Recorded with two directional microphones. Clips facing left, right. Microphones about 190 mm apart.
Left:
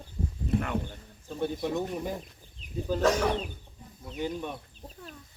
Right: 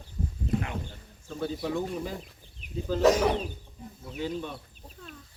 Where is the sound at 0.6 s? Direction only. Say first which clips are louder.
Left 5 dB; 55° left (ahead or behind).